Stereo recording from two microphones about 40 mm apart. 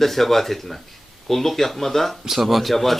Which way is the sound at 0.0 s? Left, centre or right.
Centre.